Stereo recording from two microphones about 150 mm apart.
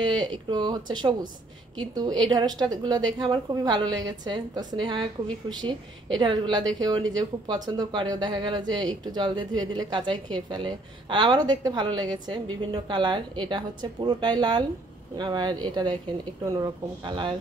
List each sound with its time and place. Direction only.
0.5 s a woman's voice: 30° right (ahead or behind)